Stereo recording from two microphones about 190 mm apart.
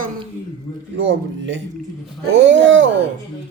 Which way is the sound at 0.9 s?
75° right (ahead or behind).